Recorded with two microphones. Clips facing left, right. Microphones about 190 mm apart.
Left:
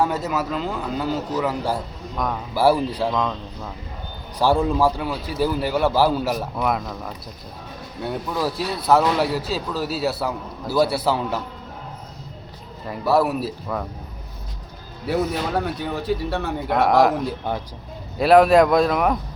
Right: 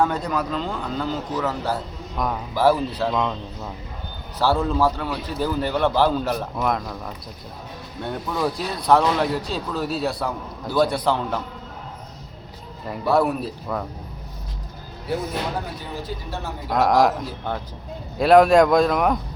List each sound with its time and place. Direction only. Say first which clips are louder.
0.0 s a man's voice: even; 5° left (ahead or behind)
2.1 s a man's voice: even; centre (ahead or behind)
2.6 s a man's voice: left 1 dB; 10° left (ahead or behind)
3.1 s a man's voice: even; 5° right (ahead or behind)
4.4 s a man's voice: left 2 dB; 15° left (ahead or behind)
12.9 s a man's voice: left 1 dB; 5° left (ahead or behind)
15.5 s speech: left 6 dB; 65° left (ahead or behind)
16.6 s a man's voice: left 1 dB; centre (ahead or behind)
18.2 s a man's voice: even; centre (ahead or behind)